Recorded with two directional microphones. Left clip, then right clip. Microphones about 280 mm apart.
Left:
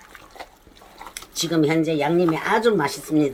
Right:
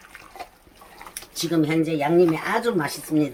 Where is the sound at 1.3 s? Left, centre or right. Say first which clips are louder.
Left 2 dB; centre.